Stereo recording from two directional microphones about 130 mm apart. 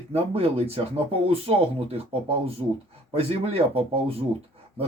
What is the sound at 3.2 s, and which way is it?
Speech, 50° right (ahead or behind).